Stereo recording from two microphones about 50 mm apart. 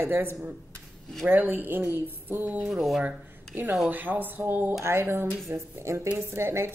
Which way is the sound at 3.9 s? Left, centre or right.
Right.